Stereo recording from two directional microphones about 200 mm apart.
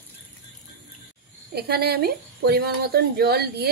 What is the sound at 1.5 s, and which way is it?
Speech, 55° right (ahead or behind).